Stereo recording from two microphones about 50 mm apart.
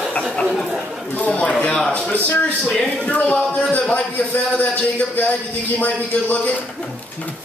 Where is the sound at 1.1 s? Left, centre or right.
Left.